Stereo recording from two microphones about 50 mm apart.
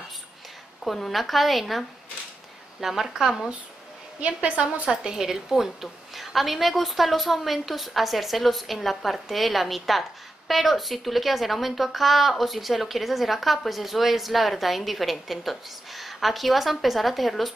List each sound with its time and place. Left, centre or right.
0.8 s a woman's voice: centre
4.2 s a woman's voice: right
4.8 s a woman's voice: centre